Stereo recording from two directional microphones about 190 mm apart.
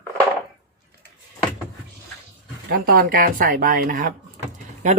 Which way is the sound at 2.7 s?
50° right (ahead or behind).